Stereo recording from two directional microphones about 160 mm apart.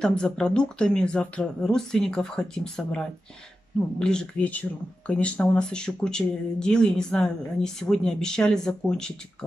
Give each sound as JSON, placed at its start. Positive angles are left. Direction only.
{"t": 0.0, "sound": "speech", "side_deg": 5}